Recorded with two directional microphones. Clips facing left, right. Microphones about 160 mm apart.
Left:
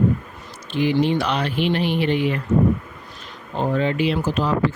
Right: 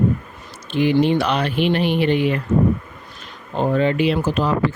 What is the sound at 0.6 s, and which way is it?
Speech, 55° right (ahead or behind).